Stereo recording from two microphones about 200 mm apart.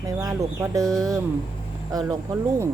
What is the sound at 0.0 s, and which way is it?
Speech, 15° right (ahead or behind).